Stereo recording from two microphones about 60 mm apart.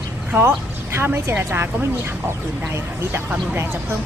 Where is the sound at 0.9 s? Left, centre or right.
Right.